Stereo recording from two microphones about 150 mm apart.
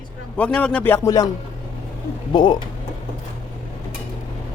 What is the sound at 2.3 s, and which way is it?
Speech, 30° left (ahead or behind).